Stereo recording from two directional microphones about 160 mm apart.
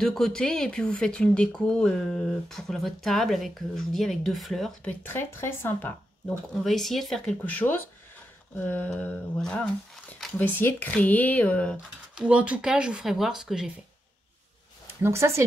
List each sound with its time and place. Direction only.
0.0 s speech: 5° left (ahead or behind)
5.0 s speech: 15° left (ahead or behind)
11.7 s speech: 10° right (ahead or behind)
15.0 s speech: 15° right (ahead or behind)